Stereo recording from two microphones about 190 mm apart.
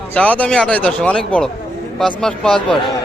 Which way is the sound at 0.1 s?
5° left (ahead or behind).